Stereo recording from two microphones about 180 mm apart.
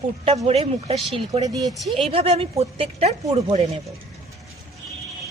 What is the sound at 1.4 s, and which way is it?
Speech, 20° right (ahead or behind).